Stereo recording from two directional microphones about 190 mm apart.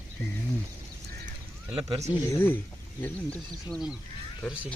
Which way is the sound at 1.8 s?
30° right (ahead or behind).